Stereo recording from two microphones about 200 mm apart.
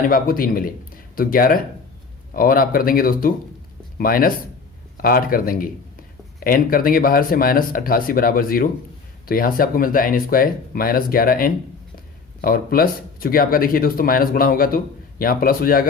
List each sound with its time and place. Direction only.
0.1 s speech: 45° left (ahead or behind)